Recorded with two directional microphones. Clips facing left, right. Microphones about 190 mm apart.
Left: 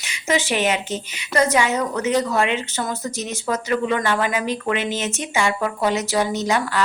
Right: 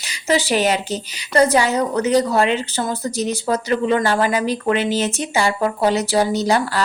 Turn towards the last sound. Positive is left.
turn(degrees=-35)  # may be behind; listen again after turning